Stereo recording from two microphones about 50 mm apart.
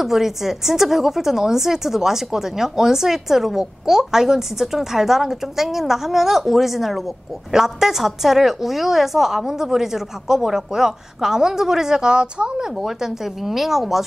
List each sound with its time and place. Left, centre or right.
0.0 s a woman's voice: centre
12.7 s a woman's voice: centre